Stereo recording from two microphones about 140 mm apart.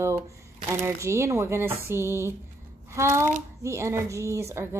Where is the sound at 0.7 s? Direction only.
20° right (ahead or behind).